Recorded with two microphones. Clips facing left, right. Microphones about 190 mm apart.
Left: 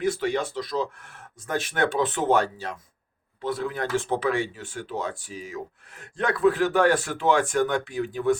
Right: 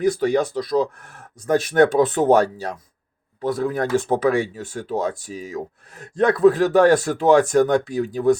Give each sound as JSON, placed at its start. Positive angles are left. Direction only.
{"t": 0.0, "sound": "speech", "side_deg": -40}